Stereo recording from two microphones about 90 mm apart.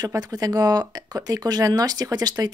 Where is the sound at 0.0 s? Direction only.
45° right (ahead or behind).